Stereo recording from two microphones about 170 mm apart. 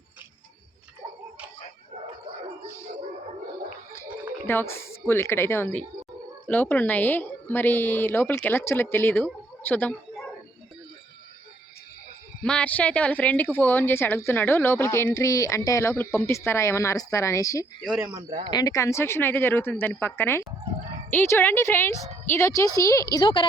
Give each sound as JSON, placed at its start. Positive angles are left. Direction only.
{"t": 4.4, "sound": "speech", "side_deg": 15}
{"t": 12.4, "sound": "speech", "side_deg": 5}
{"t": 17.8, "sound": "speech", "side_deg": -10}
{"t": 18.5, "sound": "speech", "side_deg": 20}